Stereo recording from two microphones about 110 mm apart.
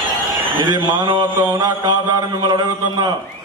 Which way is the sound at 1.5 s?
35° right (ahead or behind).